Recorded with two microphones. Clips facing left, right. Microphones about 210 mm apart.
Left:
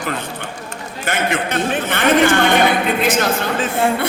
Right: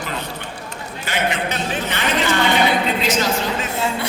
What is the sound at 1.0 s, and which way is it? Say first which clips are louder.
A man's voice: left 2 dB; 50° left (ahead or behind).